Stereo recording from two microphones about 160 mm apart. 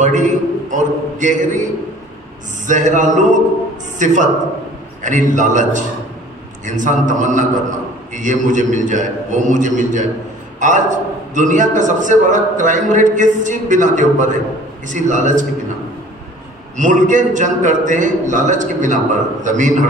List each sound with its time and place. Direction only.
0.0 s a man's voice: 50° right (ahead or behind)
16.7 s a man's voice: 50° right (ahead or behind)